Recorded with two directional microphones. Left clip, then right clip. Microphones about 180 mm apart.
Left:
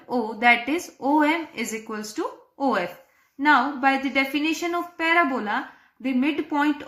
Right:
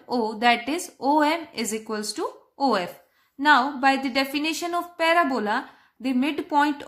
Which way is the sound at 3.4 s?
50° right (ahead or behind).